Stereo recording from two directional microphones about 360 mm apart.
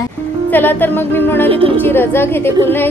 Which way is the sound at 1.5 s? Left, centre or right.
Centre.